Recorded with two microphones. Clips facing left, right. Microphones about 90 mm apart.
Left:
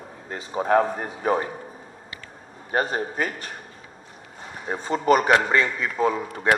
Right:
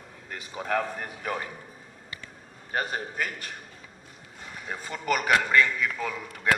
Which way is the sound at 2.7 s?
35° left (ahead or behind).